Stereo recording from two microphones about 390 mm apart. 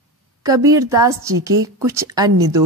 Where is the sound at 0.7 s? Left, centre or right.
Centre.